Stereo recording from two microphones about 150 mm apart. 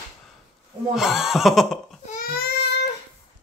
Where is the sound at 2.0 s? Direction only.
70° left (ahead or behind); by 2.7 s 85° left.